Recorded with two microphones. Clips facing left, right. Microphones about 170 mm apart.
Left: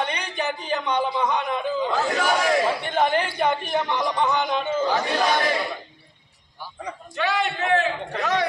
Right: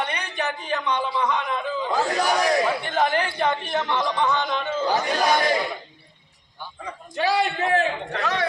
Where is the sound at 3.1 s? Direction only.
10° left (ahead or behind).